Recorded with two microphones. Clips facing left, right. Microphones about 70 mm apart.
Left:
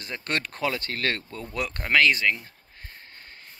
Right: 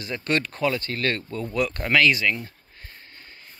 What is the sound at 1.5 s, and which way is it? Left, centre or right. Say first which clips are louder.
Speech: right 5 dB; left.